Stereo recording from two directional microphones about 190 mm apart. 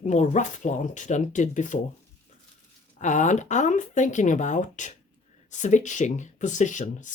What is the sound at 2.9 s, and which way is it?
Speech, 40° left (ahead or behind).